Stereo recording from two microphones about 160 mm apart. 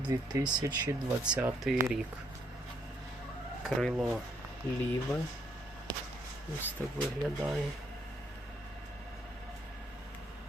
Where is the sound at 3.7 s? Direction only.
Centre (ahead or behind).